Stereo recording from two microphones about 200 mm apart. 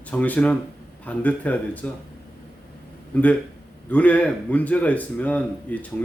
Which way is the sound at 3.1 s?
5° left (ahead or behind).